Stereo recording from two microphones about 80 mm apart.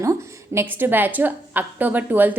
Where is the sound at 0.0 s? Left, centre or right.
Right.